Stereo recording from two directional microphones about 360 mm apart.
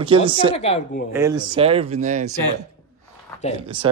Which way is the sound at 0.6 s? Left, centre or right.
Centre.